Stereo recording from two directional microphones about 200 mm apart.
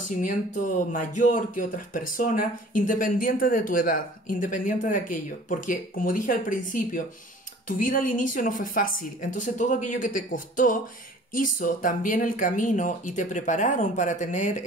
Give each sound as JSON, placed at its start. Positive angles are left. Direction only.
{"t": 0.2, "sound": "speech", "side_deg": 40}